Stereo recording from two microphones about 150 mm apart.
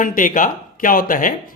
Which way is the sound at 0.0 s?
65° left (ahead or behind).